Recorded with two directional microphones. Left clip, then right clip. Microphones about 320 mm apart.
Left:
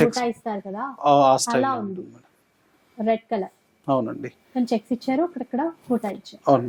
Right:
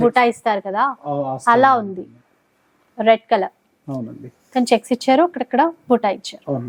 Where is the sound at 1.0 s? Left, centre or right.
Centre.